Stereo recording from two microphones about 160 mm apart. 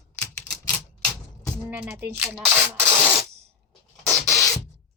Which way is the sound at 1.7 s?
10° right (ahead or behind).